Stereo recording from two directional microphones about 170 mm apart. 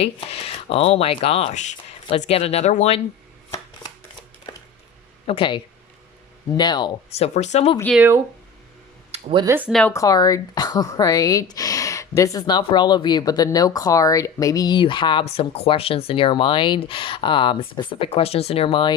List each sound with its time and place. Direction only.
0.0 s speech: 35° left (ahead or behind)
4.5 s a sound: 25° left (ahead or behind)
5.2 s speech: 30° left (ahead or behind)
7.3 s speech: 40° left (ahead or behind)
7.9 s speech: 10° right (ahead or behind)
9.1 s speech: 30° right (ahead or behind)
9.5 s speech: 10° right (ahead or behind)
9.9 s speech: 20° left (ahead or behind)